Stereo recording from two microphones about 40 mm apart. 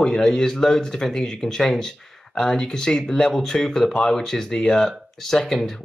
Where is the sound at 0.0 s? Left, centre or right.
Centre.